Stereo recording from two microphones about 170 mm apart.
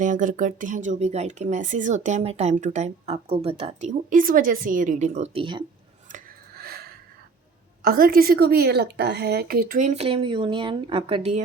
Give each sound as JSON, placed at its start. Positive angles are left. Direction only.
{"t": 0.0, "sound": "speech", "side_deg": -50}
{"t": 6.1, "sound": "a sound", "side_deg": -55}
{"t": 7.8, "sound": "a woman's voice", "side_deg": -60}